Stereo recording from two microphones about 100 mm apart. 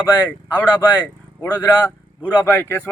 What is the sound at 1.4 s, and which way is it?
Speech, 20° left (ahead or behind).